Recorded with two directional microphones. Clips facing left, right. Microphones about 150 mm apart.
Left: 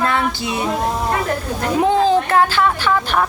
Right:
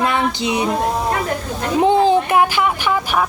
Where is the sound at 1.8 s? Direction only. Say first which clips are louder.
Right 2 dB; 15° right (ahead or behind).